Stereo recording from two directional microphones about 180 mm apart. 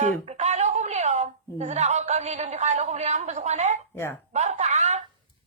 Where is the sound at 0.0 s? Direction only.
40° right (ahead or behind).